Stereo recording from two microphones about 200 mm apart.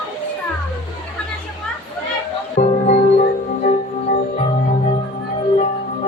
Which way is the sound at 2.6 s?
35° left (ahead or behind).